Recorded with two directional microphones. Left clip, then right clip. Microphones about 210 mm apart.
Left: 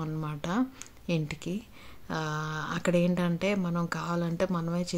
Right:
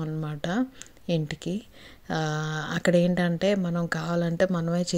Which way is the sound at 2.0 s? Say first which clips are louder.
Right 4 dB; 20° right (ahead or behind).